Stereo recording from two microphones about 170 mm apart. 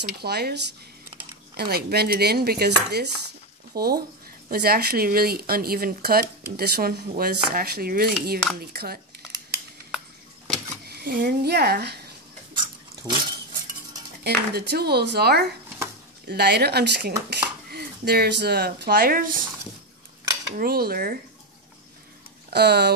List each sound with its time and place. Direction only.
0.2 s speech: 70° right (ahead or behind)
1.6 s speech: 70° right (ahead or behind)
10.9 s speech: 65° right (ahead or behind)
14.2 s speech: 75° right (ahead or behind); by 19.3 s 60° right (ahead or behind)
20.5 s speech: 60° right (ahead or behind)
22.5 s speech: 75° right (ahead or behind)